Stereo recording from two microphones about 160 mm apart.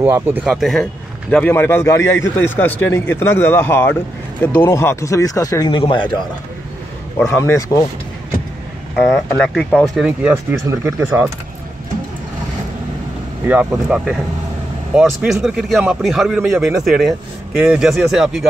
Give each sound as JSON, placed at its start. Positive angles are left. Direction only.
{"t": 0.0, "sound": "speech", "side_deg": -10}
{"t": 0.5, "sound": "speech", "side_deg": 0}
{"t": 1.3, "sound": "a man's voice", "side_deg": 15}
{"t": 7.2, "sound": "a man's voice", "side_deg": 15}
{"t": 9.3, "sound": "speech", "side_deg": 5}
{"t": 10.0, "sound": "speech", "side_deg": -10}
{"t": 13.5, "sound": "speech", "side_deg": -10}